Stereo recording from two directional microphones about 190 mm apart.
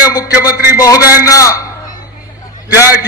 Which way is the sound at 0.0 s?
20° left (ahead or behind).